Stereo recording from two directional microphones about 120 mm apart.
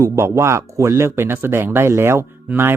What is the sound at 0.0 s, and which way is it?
Speech, 25° right (ahead or behind).